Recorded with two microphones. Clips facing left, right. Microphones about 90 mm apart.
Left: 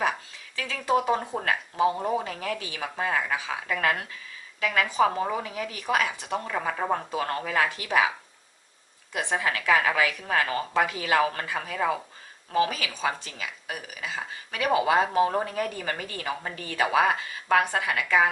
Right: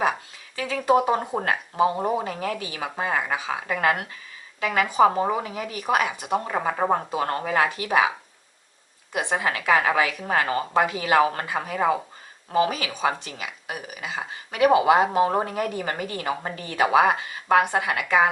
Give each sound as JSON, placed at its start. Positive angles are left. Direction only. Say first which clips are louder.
{"t": 0.5, "sound": "speech", "louder": "right 5 dB", "side_deg": -25}
{"t": 6.4, "sound": "speech", "louder": "right 4 dB", "side_deg": -30}
{"t": 9.1, "sound": "speech", "louder": "right 2 dB", "side_deg": -25}